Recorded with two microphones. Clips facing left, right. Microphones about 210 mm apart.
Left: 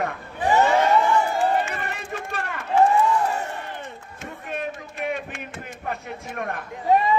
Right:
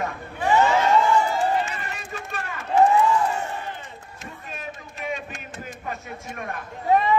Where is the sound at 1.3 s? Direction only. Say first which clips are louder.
Left 1 dB; 60° left (ahead or behind).